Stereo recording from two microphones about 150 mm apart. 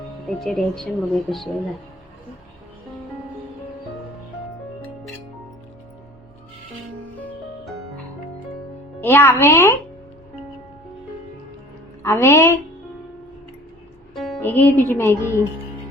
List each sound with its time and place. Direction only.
0.3 s speech: centre (ahead or behind)
9.0 s speech: 15° left (ahead or behind)
12.0 s speech: 15° left (ahead or behind)
14.4 s speech: 15° left (ahead or behind)
15.2 s speech: 15° right (ahead or behind)